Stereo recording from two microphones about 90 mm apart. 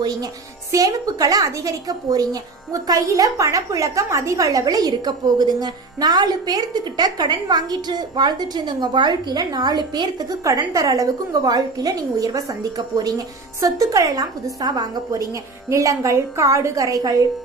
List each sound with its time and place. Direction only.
0.0 s a woman's voice: 45° right (ahead or behind)